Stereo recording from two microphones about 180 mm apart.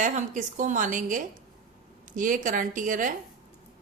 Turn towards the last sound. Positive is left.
turn(degrees=-45)  # may be behind; listen again after turning